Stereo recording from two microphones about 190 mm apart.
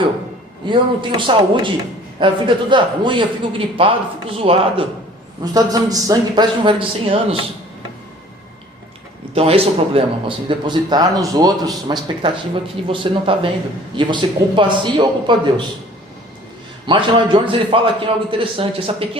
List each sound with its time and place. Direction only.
0.7 s speech: 25° right (ahead or behind)
5.4 s speech: 20° right (ahead or behind)
9.3 s speech: 30° right (ahead or behind)
16.8 s speech: 25° right (ahead or behind)